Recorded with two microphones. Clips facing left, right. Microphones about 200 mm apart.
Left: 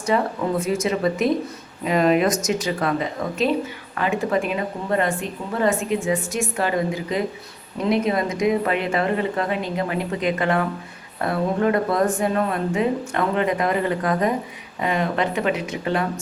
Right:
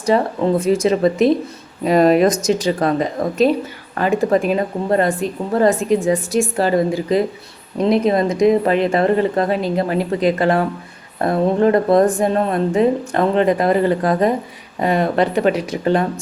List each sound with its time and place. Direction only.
0.1 s a woman's voice: 35° right (ahead or behind)